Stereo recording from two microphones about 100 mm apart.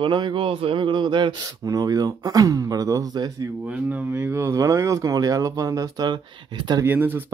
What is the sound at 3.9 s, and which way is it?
Speech, 20° right (ahead or behind).